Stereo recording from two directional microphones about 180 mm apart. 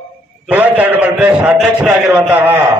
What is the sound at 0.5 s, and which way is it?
A man's voice, 10° right (ahead or behind).